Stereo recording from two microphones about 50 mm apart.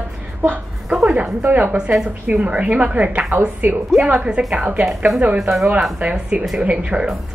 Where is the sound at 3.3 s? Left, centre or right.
Right.